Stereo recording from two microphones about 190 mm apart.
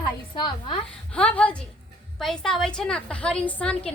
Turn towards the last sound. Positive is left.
turn(degrees=5)  # may be behind; listen again after turning